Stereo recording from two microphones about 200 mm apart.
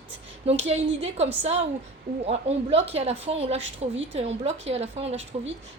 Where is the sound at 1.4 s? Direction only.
35° right (ahead or behind).